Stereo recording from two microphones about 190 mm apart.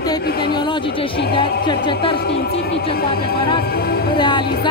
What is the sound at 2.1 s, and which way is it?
Speech, 60° left (ahead or behind).